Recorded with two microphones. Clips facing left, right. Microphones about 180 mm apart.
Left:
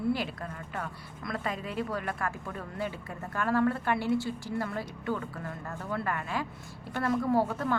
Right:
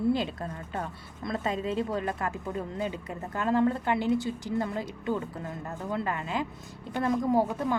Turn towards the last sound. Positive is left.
turn(degrees=-15)  # may be behind; listen again after turning